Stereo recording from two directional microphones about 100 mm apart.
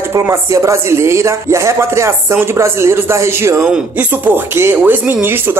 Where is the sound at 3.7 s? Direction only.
15° right (ahead or behind).